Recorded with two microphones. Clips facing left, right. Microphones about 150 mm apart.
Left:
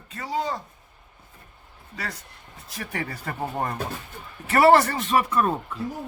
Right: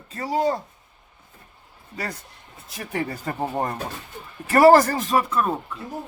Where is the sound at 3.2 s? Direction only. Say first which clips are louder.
Even; 20° right (ahead or behind).